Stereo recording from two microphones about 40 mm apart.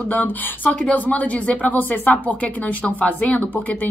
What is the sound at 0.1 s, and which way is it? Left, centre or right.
A woman's voice, left.